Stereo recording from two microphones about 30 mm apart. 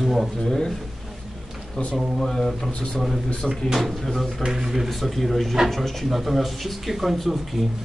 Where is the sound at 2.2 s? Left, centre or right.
Centre.